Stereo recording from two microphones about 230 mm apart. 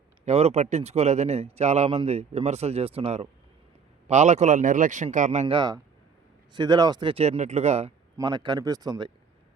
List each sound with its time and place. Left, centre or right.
0.3 s a man's voice: right
5.5 s speech: centre